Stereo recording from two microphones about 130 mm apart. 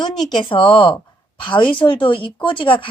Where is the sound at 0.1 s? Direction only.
5° left (ahead or behind).